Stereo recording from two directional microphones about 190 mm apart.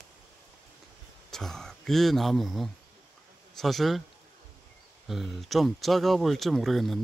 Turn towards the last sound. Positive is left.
turn(degrees=0)  # may be behind; listen again after turning